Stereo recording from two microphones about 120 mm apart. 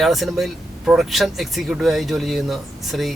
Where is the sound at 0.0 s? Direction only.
Centre (ahead or behind).